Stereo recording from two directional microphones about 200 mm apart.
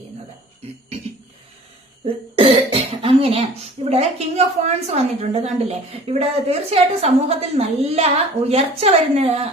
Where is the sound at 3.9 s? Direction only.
30° right (ahead or behind).